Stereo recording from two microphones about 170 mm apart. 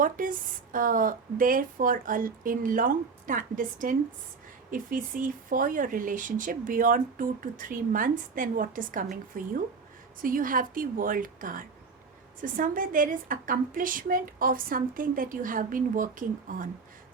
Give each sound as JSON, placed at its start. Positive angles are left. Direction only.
{"t": 0.0, "sound": "speech", "side_deg": -55}